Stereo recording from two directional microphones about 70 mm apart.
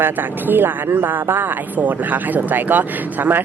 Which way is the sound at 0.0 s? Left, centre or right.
Right.